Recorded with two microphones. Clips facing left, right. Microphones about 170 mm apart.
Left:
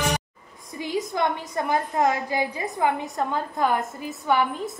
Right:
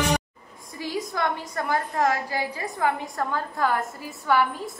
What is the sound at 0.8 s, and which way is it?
A woman's voice, 20° left (ahead or behind).